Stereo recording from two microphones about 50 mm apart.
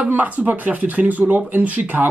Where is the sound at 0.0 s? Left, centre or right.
Right.